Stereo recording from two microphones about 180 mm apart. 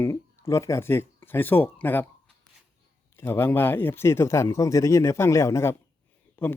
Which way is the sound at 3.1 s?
15° left (ahead or behind).